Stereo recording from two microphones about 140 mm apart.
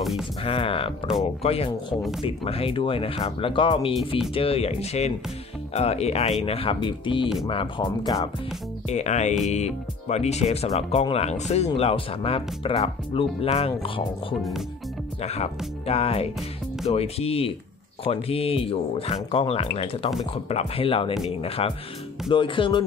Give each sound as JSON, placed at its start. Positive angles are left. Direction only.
{"t": 0.0, "sound": "music", "side_deg": -5}
{"t": 0.4, "sound": "speech", "side_deg": 40}
{"t": 8.8, "sound": "speech", "side_deg": 55}
{"t": 15.2, "sound": "speech", "side_deg": 50}